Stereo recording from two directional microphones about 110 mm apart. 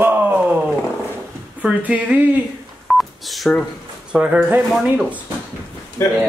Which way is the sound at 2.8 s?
Centre (ahead or behind).